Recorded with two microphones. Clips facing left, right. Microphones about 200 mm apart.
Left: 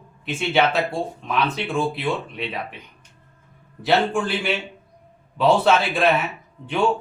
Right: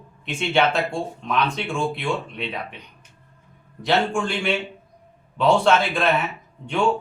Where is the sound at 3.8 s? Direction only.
5° left (ahead or behind).